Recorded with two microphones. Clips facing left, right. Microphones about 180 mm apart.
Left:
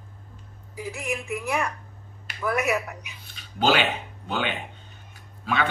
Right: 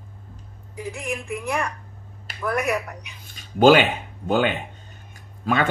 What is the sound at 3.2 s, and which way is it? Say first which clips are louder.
Speech: right 9 dB; 45° right (ahead or behind).